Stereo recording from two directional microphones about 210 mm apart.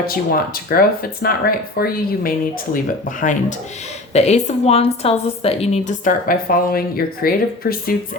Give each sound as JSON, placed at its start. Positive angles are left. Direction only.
{"t": 0.3, "sound": "a woman's voice", "side_deg": 45}